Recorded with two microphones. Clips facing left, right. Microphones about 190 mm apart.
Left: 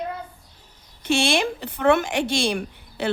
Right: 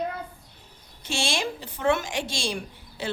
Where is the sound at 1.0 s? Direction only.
60° left (ahead or behind).